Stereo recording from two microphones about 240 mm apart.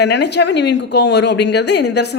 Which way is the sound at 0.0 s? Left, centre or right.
Left.